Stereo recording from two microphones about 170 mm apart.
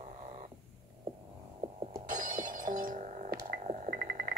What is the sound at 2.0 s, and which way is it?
Shatter, 50° right (ahead or behind).